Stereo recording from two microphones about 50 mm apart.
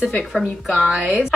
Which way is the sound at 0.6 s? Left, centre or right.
Centre.